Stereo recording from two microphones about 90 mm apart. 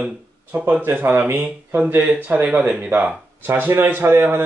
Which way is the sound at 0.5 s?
20° right (ahead or behind).